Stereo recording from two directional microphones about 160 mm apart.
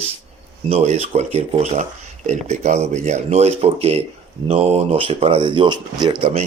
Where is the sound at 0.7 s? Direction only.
40° right (ahead or behind).